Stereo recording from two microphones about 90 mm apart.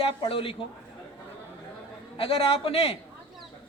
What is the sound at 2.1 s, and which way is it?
Speech, 90° left.